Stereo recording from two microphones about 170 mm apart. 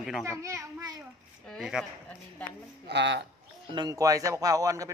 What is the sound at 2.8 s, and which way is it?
Speech, 90° right.